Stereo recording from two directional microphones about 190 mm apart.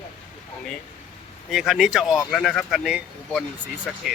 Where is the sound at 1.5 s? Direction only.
Centre (ahead or behind).